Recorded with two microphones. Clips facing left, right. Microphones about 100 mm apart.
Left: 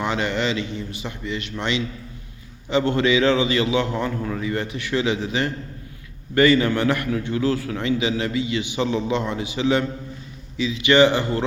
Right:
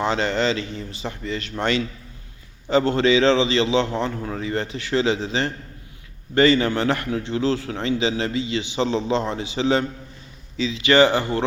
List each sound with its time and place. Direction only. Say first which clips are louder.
0.0 s a man's voice: right 2 dB; 30° right (ahead or behind)